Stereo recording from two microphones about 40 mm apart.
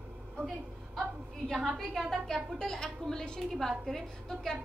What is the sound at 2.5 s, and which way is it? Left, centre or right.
A woman's voice, centre.